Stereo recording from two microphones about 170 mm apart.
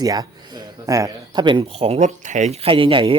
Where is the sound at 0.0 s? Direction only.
20° right (ahead or behind).